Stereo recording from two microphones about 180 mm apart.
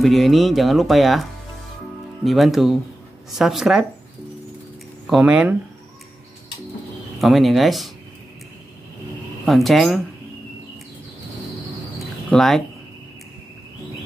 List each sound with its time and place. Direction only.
0.0 s speech: centre (ahead or behind)
2.2 s speech: centre (ahead or behind)
5.0 s speech: 5° right (ahead or behind)
7.2 s speech: centre (ahead or behind)
9.5 s speech: centre (ahead or behind)
12.3 s speech: centre (ahead or behind)